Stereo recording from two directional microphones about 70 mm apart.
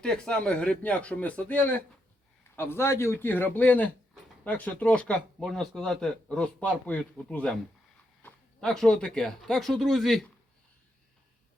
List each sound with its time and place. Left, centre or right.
0.0 s speech: centre
2.6 s a man's voice: left; by 6.1 s centre
6.2 s speech: centre
8.2 s a sound: left
8.6 s speech: centre